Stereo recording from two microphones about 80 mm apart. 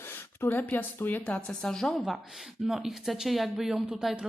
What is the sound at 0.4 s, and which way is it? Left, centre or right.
Speech, left.